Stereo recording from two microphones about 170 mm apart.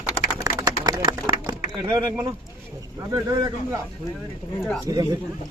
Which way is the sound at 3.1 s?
20° right (ahead or behind).